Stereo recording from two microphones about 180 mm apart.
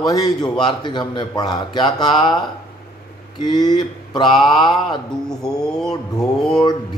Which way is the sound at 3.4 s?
25° left (ahead or behind).